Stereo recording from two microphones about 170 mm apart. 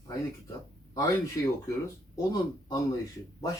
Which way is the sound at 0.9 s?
20° left (ahead or behind).